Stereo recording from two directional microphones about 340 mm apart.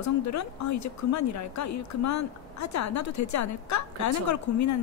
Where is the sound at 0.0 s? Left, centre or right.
Left.